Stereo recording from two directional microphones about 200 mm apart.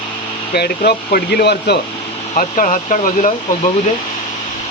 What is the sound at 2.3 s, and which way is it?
Speech, 40° left (ahead or behind).